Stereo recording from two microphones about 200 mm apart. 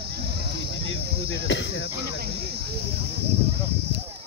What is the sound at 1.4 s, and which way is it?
Speech, 65° left (ahead or behind).